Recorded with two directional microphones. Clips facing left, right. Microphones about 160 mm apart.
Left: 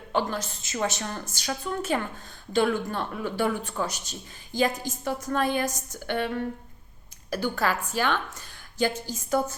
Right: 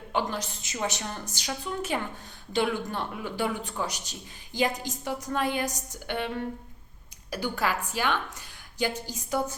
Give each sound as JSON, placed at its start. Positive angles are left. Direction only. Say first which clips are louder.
{"t": 0.1, "sound": "speech", "louder": "left 2 dB", "side_deg": -15}